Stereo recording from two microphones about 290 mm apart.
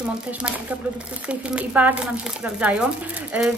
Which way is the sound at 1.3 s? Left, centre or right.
Centre.